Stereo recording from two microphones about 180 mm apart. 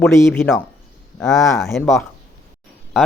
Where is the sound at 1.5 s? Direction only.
15° left (ahead or behind).